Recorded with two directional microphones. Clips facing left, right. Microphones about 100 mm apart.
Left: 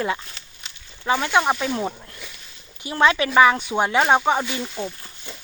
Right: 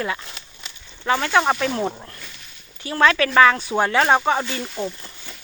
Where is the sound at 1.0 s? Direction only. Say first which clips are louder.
Right 1 dB; 15° left (ahead or behind).